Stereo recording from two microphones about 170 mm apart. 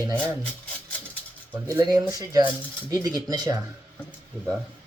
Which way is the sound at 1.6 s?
25° right (ahead or behind).